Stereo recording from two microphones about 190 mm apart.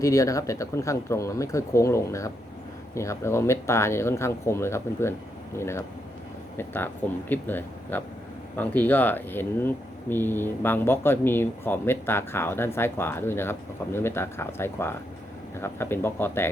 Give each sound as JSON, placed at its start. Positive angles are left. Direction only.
{"t": 0.0, "sound": "speech", "side_deg": 15}